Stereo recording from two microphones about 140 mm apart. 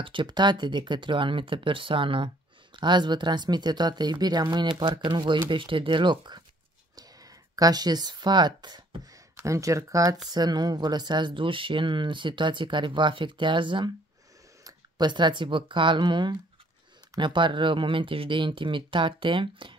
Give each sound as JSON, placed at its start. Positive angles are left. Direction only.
{"t": 0.0, "sound": "speech", "side_deg": -35}